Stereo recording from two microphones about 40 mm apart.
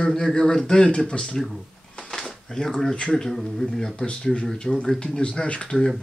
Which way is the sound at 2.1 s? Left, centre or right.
Centre.